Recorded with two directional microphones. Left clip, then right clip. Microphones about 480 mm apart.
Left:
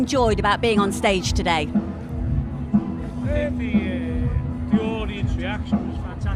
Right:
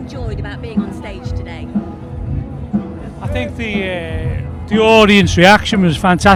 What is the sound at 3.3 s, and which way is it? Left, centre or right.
Speech, right.